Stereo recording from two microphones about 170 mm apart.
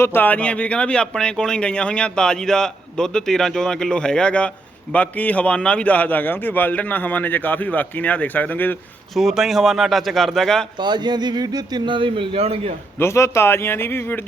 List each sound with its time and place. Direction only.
0.0 s speech: 10° left (ahead or behind)
9.1 s a man's voice: centre (ahead or behind)
10.8 s speech: 25° right (ahead or behind)
13.0 s speech: 15° left (ahead or behind)